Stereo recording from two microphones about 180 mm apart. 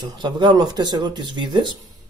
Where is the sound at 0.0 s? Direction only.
25° right (ahead or behind).